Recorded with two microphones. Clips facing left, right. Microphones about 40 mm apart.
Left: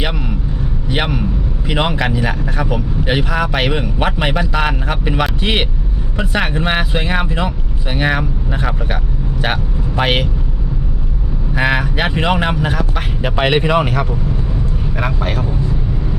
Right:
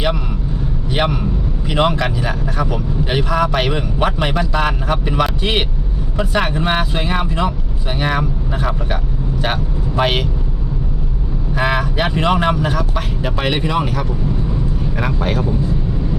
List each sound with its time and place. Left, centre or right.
0.9 s a man's voice: centre
11.5 s speech: centre
13.2 s speech: left
14.9 s speech: centre